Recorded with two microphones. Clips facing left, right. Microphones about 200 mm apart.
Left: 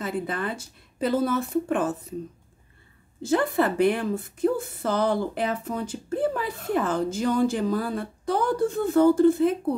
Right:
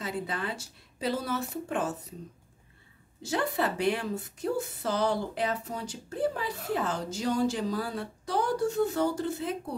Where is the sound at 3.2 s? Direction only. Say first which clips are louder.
Left 7 dB; 55° left (ahead or behind).